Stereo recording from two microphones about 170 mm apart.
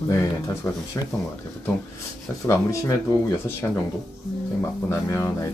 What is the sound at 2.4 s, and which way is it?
Speech, 20° left (ahead or behind).